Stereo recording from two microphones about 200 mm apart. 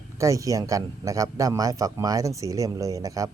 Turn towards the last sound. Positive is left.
turn(degrees=-15)  # may be behind; listen again after turning